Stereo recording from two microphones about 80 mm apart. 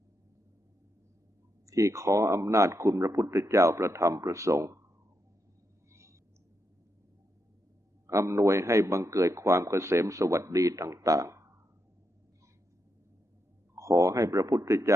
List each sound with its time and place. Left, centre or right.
1.6 s a man's voice: right
5.9 s a sound: right
8.0 s a man's voice: right
13.7 s speech: right